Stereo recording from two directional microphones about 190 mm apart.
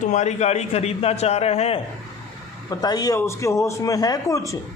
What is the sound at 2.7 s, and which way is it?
A man's voice, 20° left (ahead or behind).